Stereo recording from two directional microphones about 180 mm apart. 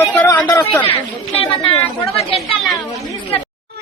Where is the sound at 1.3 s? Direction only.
30° left (ahead or behind).